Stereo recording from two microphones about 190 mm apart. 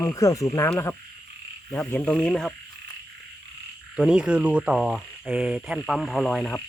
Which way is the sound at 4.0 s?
5° right (ahead or behind).